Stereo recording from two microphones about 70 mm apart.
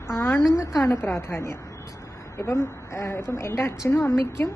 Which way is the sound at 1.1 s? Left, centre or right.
Left.